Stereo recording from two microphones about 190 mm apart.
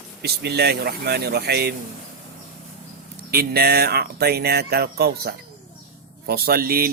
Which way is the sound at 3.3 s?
55° right (ahead or behind).